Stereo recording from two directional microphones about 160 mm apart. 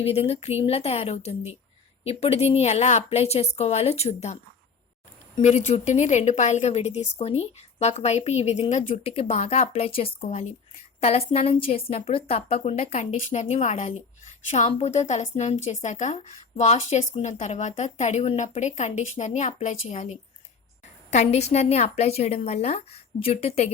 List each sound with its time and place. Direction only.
0.0 s a woman's voice: 40° left (ahead or behind)
5.4 s a woman's voice: 45° left (ahead or behind)